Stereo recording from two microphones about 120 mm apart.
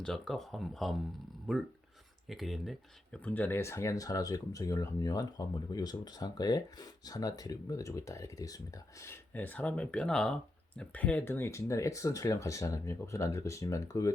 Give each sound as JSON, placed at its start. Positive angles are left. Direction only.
{"t": 0.0, "sound": "speech", "side_deg": 5}
{"t": 3.2, "sound": "speech", "side_deg": 15}
{"t": 9.3, "sound": "speech", "side_deg": 15}